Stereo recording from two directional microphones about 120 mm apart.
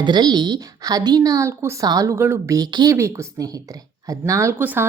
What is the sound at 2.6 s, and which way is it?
A woman's voice, 35° right (ahead or behind).